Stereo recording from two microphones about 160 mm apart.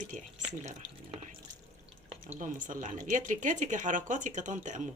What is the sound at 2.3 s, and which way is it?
A woman's voice, 50° right (ahead or behind).